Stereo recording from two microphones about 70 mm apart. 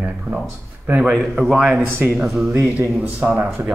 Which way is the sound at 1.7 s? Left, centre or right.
Centre.